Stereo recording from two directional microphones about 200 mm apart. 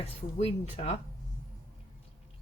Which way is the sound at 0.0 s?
30° left (ahead or behind).